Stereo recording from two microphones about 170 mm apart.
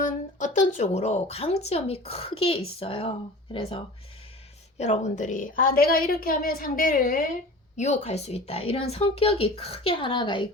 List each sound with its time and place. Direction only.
0.0 s a woman's voice: 50° left (ahead or behind)
7.8 s a woman's voice: 45° left (ahead or behind); by 10.5 s 30° left (ahead or behind)